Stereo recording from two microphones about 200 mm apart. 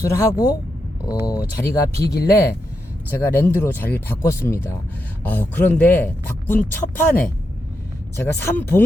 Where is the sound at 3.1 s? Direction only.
10° left (ahead or behind).